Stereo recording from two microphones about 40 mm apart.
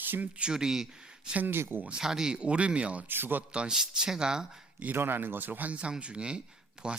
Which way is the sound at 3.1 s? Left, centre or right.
Right.